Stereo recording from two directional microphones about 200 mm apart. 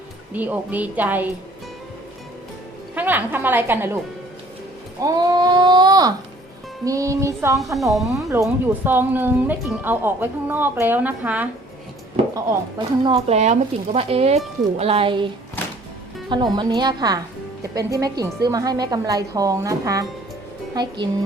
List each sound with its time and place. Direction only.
0.3 s speech: 10° right (ahead or behind)
2.9 s a woman's voice: 10° right (ahead or behind)
4.9 s speech: 20° right (ahead or behind)
7.8 s speech: centre (ahead or behind)
8.3 s speech: 10° right (ahead or behind)
13.1 s speech: 30° right (ahead or behind)
16.3 s speech: 20° right (ahead or behind)